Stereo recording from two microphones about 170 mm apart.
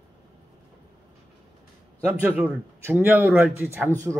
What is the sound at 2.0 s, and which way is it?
A man's voice, 10° right (ahead or behind).